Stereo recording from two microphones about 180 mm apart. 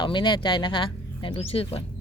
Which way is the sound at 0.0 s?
25° left (ahead or behind).